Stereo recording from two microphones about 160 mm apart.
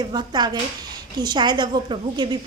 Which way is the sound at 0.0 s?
25° right (ahead or behind).